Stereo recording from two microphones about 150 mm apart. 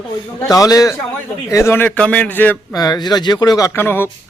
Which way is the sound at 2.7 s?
25° left (ahead or behind).